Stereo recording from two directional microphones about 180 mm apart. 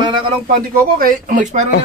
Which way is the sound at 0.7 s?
50° right (ahead or behind).